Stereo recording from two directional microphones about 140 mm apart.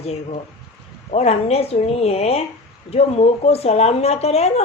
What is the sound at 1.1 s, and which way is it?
Speech, 50° left (ahead or behind).